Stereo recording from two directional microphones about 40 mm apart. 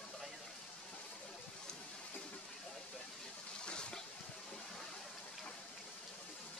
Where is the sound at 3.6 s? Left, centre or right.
Left.